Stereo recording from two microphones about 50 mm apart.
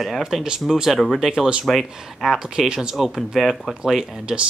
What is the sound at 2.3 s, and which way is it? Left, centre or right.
Speech, centre.